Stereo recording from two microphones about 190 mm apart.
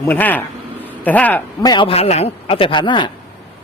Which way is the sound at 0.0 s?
10° left (ahead or behind).